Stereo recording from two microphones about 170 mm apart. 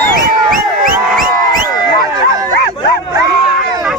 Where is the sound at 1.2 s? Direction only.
55° right (ahead or behind).